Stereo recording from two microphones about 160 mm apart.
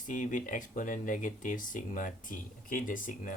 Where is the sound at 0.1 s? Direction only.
55° left (ahead or behind).